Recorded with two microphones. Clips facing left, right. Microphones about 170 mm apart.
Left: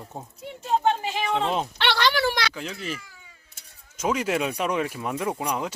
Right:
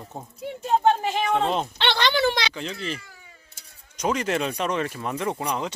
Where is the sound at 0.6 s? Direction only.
45° right (ahead or behind).